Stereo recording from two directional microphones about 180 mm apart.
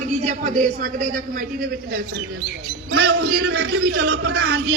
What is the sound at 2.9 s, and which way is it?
A man's voice, 70° right (ahead or behind).